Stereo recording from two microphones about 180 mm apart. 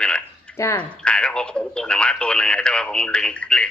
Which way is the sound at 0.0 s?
5° left (ahead or behind).